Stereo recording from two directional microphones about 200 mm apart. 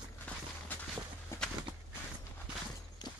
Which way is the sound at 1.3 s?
15° left (ahead or behind).